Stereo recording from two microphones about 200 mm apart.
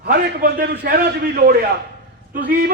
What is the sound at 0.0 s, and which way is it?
A man's voice, 55° right (ahead or behind).